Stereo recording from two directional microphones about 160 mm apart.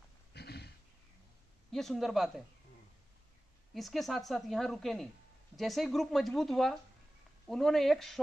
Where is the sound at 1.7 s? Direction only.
Centre (ahead or behind).